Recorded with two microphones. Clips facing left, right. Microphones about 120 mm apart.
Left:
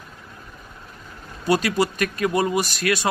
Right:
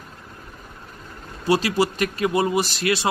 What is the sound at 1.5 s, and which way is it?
A man's voice, 30° right (ahead or behind).